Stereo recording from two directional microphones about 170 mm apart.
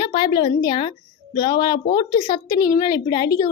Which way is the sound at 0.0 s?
30° left (ahead or behind).